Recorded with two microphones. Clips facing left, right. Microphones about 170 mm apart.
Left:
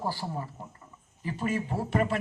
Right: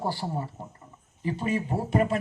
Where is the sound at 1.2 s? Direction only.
15° right (ahead or behind).